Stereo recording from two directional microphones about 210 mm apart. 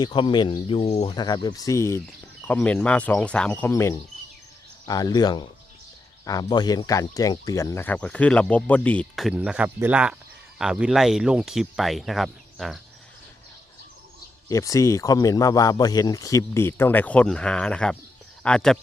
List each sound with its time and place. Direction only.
0.0 s speech: 20° left (ahead or behind); by 12.8 s centre (ahead or behind)
14.5 s speech: 15° left (ahead or behind)